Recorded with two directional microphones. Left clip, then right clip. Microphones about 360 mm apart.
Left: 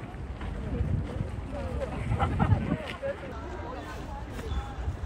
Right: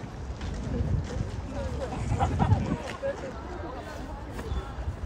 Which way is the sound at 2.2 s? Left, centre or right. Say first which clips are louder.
Right 1 dB; right.